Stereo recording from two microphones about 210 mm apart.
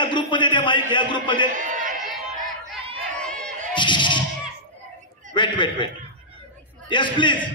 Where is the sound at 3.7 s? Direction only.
20° left (ahead or behind).